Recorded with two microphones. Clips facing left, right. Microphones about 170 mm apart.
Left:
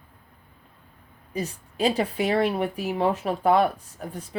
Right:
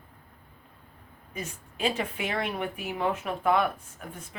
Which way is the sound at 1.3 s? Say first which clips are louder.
Left 7 dB; 35° left (ahead or behind).